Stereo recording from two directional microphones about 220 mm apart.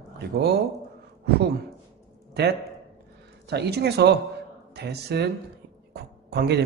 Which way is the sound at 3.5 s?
50° right (ahead or behind).